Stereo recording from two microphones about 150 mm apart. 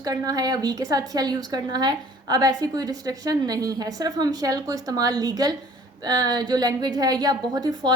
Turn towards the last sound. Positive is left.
turn(degrees=-25)  # may be behind; listen again after turning